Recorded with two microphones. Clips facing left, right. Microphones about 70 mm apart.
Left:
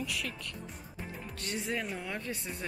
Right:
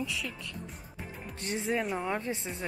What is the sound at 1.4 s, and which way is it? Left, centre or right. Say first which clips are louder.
Speech: right 5 dB; right.